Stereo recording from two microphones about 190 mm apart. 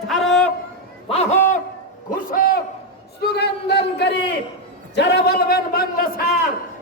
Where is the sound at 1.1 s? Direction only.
35° left (ahead or behind).